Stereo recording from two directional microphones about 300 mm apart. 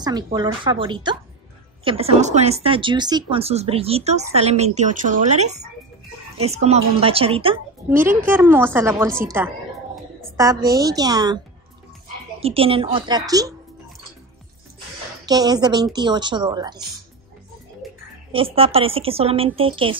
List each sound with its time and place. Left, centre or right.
0.0 s speech: centre
8.0 s speech: centre
10.3 s speech: centre
15.2 s speech: centre
17.8 s music: centre
18.3 s speech: centre